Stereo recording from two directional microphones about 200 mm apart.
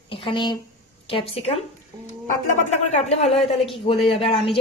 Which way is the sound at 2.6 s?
35° left (ahead or behind).